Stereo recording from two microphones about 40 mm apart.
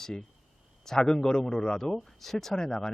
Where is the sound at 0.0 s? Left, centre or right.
Centre.